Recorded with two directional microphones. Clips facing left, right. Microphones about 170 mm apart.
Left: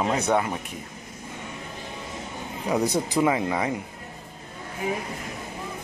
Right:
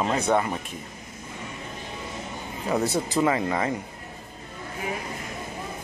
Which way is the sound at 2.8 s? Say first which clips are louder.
Left 1 dB; 15° left (ahead or behind).